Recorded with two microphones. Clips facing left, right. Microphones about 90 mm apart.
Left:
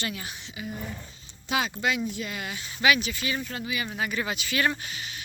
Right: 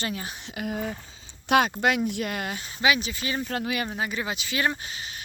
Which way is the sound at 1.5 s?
55° right (ahead or behind).